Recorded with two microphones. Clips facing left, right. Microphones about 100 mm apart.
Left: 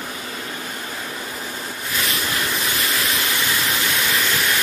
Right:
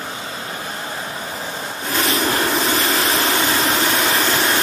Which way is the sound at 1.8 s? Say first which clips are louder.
Right 7 dB; 35° right (ahead or behind).